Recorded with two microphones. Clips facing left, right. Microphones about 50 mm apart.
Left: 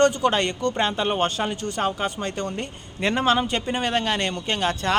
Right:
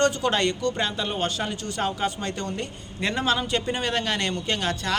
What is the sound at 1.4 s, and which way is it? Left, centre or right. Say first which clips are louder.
Speech: left 3 dB; left.